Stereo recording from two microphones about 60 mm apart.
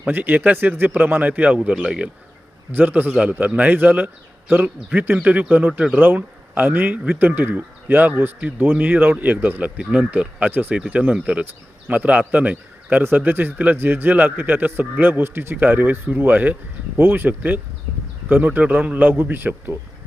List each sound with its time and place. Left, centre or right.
0.0 s speech: right
1.8 s speech: centre
2.7 s speech: right
13.0 s a man's voice: right